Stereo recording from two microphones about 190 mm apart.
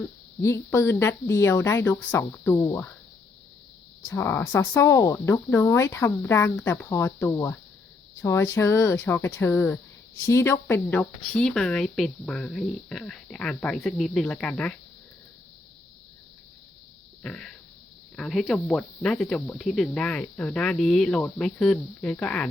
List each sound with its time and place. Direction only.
0.4 s speech: 15° left (ahead or behind)
4.1 s speech: 15° left (ahead or behind)
17.2 s speech: 5° left (ahead or behind)